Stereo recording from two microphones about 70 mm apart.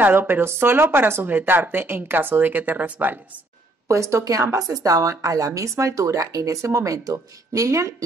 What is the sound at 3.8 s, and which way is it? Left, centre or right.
A woman's voice, right.